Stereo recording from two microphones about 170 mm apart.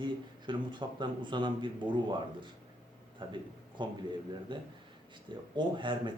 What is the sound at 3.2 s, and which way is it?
A man's voice, 30° right (ahead or behind).